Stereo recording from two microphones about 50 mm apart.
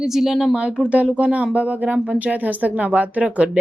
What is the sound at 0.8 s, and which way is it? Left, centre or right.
Speech, right.